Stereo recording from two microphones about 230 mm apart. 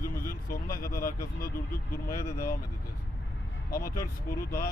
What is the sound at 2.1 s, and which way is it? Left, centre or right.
Speech, centre.